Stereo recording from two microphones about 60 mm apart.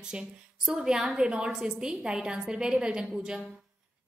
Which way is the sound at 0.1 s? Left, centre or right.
Centre.